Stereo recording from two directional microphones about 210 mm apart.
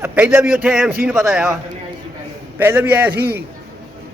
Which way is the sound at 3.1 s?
50° right (ahead or behind).